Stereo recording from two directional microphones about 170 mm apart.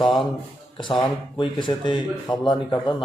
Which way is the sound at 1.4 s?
25° left (ahead or behind).